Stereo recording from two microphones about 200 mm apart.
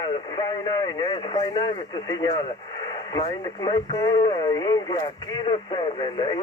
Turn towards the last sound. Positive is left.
turn(degrees=20)  # may be behind; listen again after turning